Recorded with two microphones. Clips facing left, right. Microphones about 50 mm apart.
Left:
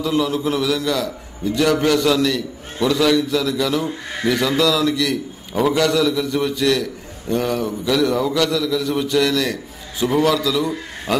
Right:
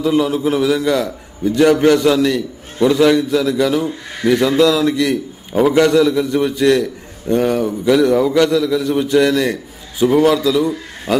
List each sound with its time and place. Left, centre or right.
0.0 s a man's voice: centre